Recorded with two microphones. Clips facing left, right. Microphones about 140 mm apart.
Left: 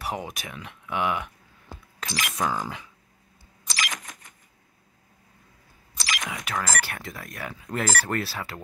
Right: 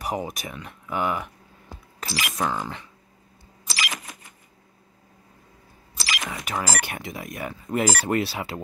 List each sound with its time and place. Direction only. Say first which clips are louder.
0.0 s speech: right 3 dB; 10° right (ahead or behind)
2.6 s speech: right 1 dB; 5° left (ahead or behind)
3.6 s a sound: right 1 dB; 5° right (ahead or behind)
5.9 s speech: right 1 dB; 5° right (ahead or behind)
8.3 s speech: right 4 dB; 25° right (ahead or behind)